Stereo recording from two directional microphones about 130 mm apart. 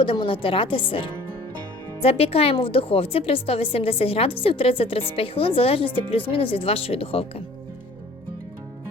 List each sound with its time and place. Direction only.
0.0 s a woman's voice: 40° left (ahead or behind)